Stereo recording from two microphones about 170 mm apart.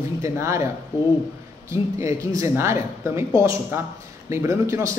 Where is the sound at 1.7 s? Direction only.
15° right (ahead or behind).